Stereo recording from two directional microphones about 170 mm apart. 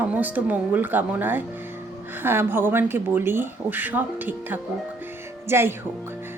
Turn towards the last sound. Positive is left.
turn(degrees=-15)  # may be behind; listen again after turning